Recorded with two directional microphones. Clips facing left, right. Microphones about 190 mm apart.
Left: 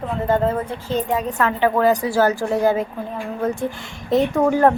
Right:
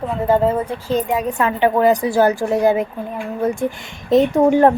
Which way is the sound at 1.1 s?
15° right (ahead or behind).